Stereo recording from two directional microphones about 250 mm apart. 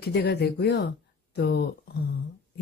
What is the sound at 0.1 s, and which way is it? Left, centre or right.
Speech, left.